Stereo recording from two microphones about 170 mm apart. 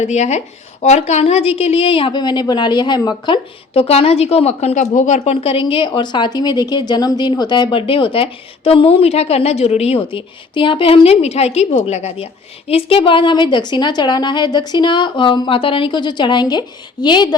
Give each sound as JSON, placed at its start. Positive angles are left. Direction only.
{"t": 0.0, "sound": "a woman's voice", "side_deg": 45}